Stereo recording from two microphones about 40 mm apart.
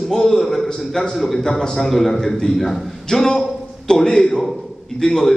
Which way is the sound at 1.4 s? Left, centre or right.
Centre.